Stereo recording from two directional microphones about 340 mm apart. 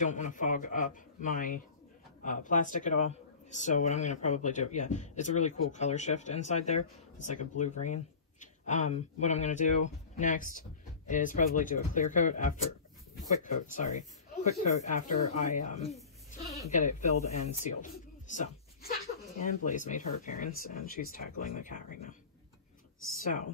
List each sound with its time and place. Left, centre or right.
0.0 s speech: left
17.6 s a sound: left
19.4 s speech: left